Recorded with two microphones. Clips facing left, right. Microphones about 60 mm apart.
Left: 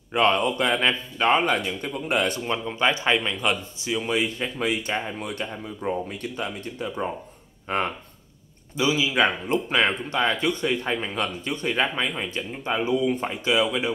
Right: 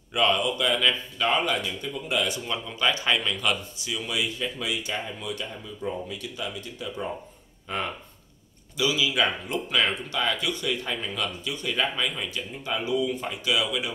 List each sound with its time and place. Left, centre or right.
0.1 s speech: left